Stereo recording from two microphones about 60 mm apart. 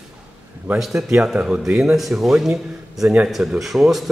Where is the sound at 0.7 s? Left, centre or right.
Centre.